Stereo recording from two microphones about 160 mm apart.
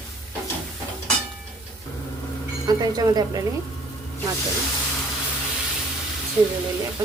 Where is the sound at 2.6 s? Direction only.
25° right (ahead or behind).